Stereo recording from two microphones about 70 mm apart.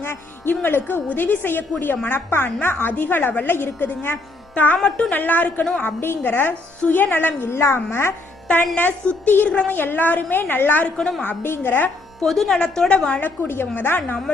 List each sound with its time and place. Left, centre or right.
0.0 s music: left
0.5 s a woman's voice: left
4.8 s a woman's voice: centre
5.1 s a woman's voice: left
8.7 s a woman's voice: left
9.7 s a woman's voice: left
11.2 s a woman's voice: left
12.2 s a woman's voice: centre
13.2 s a woman's voice: left